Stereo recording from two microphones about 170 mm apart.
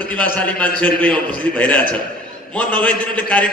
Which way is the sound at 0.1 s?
10° left (ahead or behind).